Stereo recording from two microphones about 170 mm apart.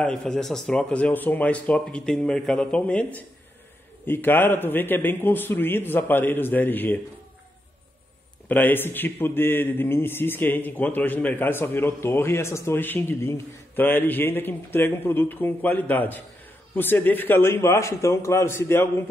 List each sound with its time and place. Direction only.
0.0 s a man's voice: 5° left (ahead or behind)
8.5 s a man's voice: 10° left (ahead or behind)